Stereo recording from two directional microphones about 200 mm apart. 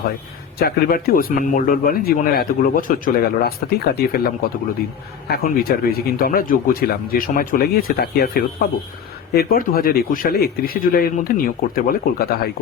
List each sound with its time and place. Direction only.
0.6 s speech: 50° left (ahead or behind)